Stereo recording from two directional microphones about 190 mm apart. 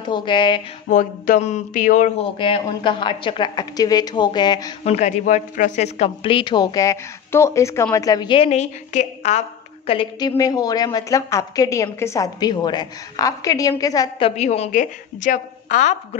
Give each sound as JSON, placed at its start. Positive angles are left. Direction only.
{"t": 0.1, "sound": "a woman's voice", "side_deg": 25}
{"t": 0.8, "sound": "a woman's voice", "side_deg": 45}
{"t": 4.8, "sound": "a woman's voice", "side_deg": 35}
{"t": 8.5, "sound": "a woman's voice", "side_deg": 35}
{"t": 9.8, "sound": "a woman's voice", "side_deg": 25}
{"t": 14.3, "sound": "a woman's voice", "side_deg": 35}